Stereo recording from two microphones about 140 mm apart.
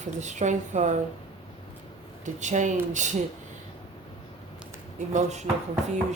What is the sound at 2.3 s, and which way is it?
Speech, 60° right (ahead or behind).